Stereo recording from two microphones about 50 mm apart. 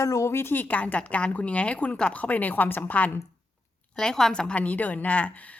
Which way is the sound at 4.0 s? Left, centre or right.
Centre.